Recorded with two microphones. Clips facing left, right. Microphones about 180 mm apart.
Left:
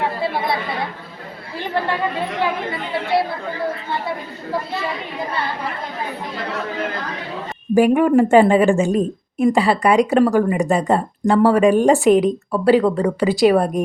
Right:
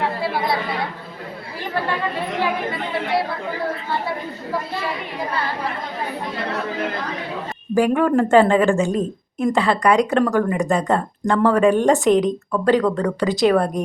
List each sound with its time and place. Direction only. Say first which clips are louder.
0.2 s chatter: left 1 dB; 25° left (ahead or behind)
7.8 s a woman's voice: left 3 dB; 15° left (ahead or behind)